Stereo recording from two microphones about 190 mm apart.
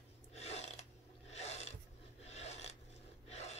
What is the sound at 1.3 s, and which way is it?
Filing, 35° left (ahead or behind).